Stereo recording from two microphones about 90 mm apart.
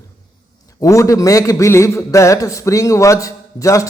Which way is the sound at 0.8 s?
35° left (ahead or behind).